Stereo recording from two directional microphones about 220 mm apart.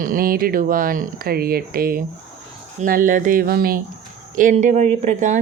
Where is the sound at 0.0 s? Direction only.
40° right (ahead or behind).